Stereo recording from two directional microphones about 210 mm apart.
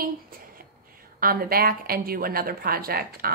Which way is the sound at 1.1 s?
45° right (ahead or behind).